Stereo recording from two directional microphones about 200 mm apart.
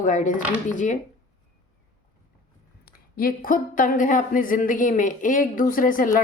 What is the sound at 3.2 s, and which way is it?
A woman's voice, 45° left (ahead or behind).